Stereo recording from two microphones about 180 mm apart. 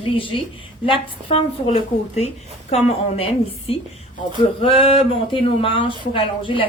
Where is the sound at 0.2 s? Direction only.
30° left (ahead or behind).